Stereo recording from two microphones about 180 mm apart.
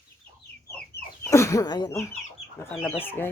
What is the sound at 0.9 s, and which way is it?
Chicken, 65° left (ahead or behind).